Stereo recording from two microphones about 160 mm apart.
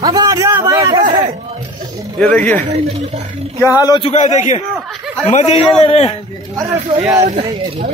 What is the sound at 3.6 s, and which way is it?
Speech, 20° left (ahead or behind).